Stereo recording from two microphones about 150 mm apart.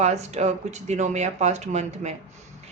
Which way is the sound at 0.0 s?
45° right (ahead or behind).